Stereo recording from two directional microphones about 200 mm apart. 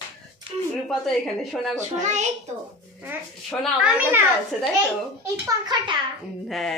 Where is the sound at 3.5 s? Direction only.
5° right (ahead or behind).